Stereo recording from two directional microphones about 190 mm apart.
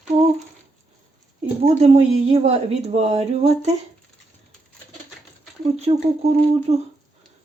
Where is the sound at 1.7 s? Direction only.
35° right (ahead or behind).